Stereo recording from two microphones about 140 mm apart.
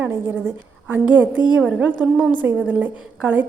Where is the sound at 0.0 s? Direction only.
15° right (ahead or behind).